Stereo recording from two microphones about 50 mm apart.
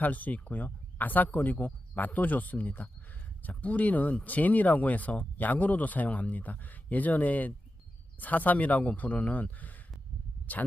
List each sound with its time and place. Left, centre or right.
0.0 s speech: left